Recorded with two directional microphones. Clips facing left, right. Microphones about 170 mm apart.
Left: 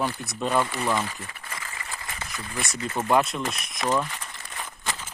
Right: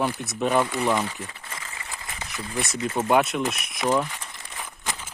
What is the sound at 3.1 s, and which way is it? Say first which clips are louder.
Speech: right 1 dB; centre (ahead or behind).